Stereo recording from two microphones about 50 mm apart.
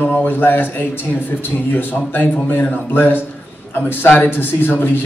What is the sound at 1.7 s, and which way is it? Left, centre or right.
A man's voice, left.